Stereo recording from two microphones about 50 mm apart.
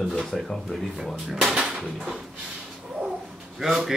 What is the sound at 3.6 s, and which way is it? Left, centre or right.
Speech, centre.